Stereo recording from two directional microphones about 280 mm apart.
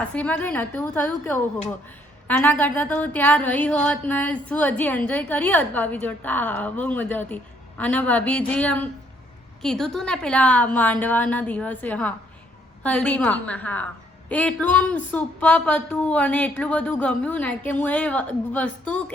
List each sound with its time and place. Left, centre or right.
0.1 s a woman's voice: centre